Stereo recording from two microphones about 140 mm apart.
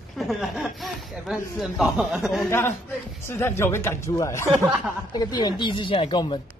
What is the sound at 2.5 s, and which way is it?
A man's voice, 15° left (ahead or behind).